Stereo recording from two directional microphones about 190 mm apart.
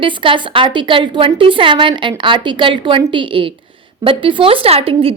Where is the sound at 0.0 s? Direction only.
25° right (ahead or behind).